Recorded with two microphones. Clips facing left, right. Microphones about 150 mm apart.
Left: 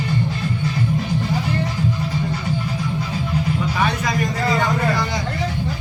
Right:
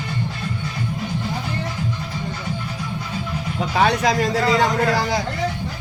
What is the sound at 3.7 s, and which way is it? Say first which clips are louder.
Music: right 3 dB; 80° right.